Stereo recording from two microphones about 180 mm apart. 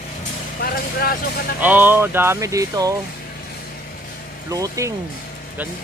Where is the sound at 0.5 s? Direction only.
55° left (ahead or behind).